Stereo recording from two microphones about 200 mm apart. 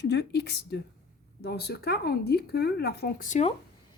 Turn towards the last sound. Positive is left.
turn(degrees=35)  # may be behind; listen again after turning